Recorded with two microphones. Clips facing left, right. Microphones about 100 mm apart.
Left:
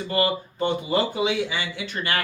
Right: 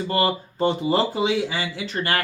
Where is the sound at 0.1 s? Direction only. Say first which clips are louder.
Even; 35° right (ahead or behind).